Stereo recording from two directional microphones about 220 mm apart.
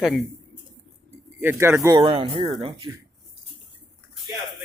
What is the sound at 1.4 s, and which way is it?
Speech, 10° right (ahead or behind).